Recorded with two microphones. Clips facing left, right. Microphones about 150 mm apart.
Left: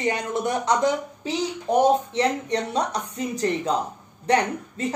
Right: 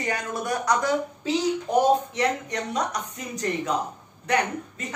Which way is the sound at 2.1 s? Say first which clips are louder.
Left 3 dB; 30° left (ahead or behind).